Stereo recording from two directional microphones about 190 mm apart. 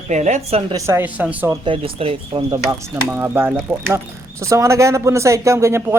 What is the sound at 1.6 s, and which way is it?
Speech, 30° right (ahead or behind).